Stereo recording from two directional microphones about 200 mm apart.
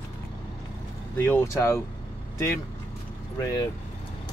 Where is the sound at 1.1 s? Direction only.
10° left (ahead or behind).